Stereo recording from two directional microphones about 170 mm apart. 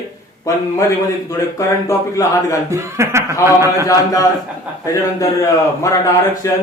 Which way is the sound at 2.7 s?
15° right (ahead or behind).